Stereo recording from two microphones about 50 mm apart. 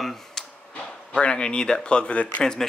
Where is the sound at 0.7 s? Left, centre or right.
Left.